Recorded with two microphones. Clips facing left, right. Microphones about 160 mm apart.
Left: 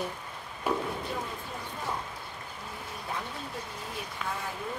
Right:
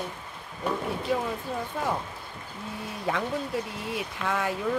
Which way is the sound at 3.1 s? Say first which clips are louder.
Right 10 dB; 90° right.